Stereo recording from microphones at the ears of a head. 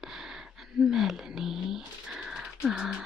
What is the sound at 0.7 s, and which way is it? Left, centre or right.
Speech, left.